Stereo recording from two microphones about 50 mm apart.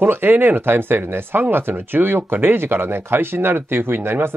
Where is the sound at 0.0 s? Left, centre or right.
Right.